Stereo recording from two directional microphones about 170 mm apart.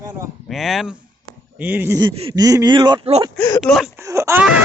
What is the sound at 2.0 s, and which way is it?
Speech, 30° right (ahead or behind).